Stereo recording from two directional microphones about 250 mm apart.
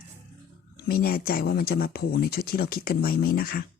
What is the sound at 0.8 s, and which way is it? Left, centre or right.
Speech, left.